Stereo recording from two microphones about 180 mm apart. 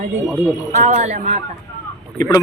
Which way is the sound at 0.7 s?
45° right (ahead or behind).